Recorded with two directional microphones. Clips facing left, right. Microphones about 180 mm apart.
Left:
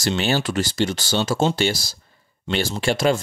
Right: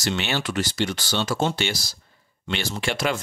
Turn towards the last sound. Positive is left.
turn(degrees=30)  # may be behind; listen again after turning